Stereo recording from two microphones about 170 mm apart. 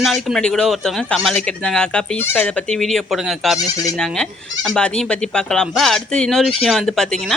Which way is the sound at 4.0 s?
Centre (ahead or behind).